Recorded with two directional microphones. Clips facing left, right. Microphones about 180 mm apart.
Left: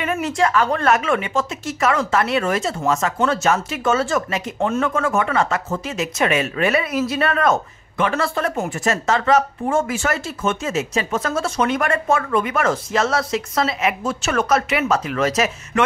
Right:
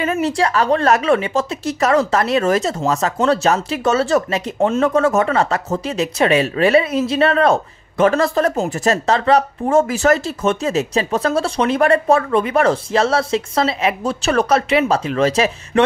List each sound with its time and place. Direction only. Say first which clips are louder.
0.0 s speech: right 2 dB; 35° right (ahead or behind)
4.6 s speech: right 4 dB; 25° right (ahead or behind)
4.8 s speech: right 5 dB; 40° right (ahead or behind)